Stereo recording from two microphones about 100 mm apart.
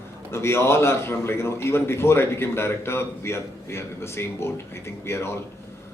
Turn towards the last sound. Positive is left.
turn(degrees=25)  # may be behind; listen again after turning